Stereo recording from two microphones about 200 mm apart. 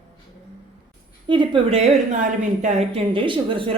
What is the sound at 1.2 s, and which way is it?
A woman's voice, 25° right (ahead or behind).